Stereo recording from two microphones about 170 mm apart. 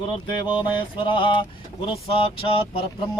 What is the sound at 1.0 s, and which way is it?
Speech, 30° left (ahead or behind).